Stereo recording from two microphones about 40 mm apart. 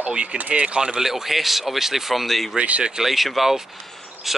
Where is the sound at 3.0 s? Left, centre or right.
Centre.